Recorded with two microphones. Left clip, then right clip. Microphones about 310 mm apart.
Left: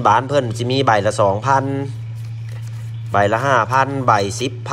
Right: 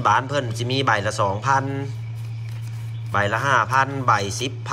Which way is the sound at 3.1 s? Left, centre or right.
Centre.